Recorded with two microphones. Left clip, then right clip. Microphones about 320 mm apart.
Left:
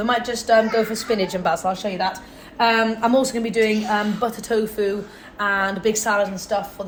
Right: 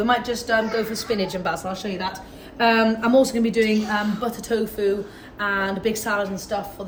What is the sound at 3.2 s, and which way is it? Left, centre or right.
A woman's voice, centre.